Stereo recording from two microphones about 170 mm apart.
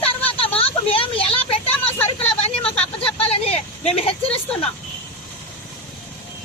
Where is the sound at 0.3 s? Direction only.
35° left (ahead or behind).